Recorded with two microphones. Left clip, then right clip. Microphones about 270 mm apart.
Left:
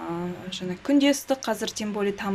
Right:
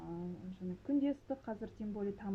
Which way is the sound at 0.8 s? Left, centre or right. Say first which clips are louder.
Left 15 dB; centre.